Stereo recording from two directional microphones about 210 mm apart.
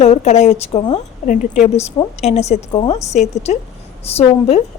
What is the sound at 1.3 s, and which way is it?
A woman's voice, 35° left (ahead or behind).